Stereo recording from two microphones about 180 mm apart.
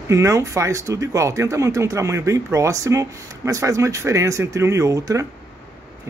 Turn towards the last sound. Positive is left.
turn(degrees=-20)  # may be behind; listen again after turning